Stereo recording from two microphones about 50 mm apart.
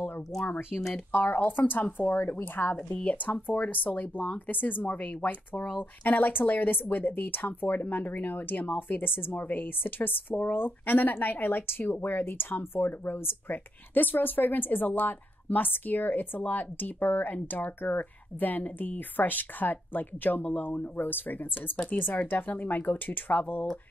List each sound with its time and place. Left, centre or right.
0.7 s speech: centre
1.2 s speech: left
3.0 s speech: left